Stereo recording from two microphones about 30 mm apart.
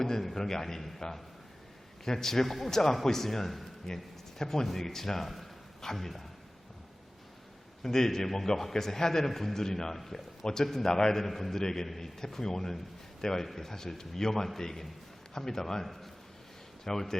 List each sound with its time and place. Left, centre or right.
0.0 s a man's voice: centre
2.0 s a man's voice: centre
7.8 s a man's voice: centre
11.3 s a man's voice: centre
11.5 s a man's voice: centre